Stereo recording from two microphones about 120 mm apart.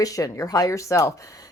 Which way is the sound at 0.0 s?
30° left (ahead or behind).